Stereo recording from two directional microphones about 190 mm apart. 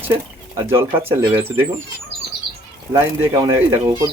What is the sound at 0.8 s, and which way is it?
Speech, 10° right (ahead or behind).